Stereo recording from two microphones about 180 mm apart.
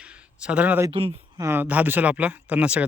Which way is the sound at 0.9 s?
30° right (ahead or behind).